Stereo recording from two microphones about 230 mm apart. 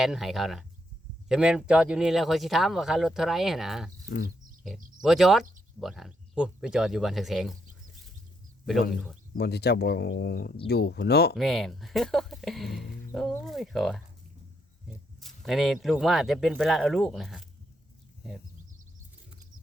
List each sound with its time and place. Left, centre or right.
0.0 s speech: centre
4.9 s speech: centre
9.3 s speech: left
11.3 s speech: centre
15.2 s speech: centre